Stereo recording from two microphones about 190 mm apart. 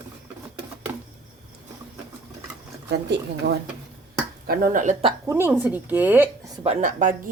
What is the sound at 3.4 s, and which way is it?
Speech, 65° right (ahead or behind).